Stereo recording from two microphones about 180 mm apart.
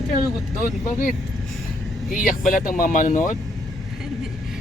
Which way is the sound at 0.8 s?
50° left (ahead or behind).